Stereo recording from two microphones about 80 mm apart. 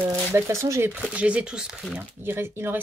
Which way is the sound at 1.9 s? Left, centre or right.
Right.